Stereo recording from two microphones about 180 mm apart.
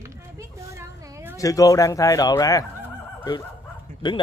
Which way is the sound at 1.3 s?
20° left (ahead or behind).